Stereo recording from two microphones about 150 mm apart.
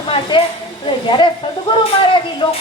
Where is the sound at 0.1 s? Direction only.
35° left (ahead or behind).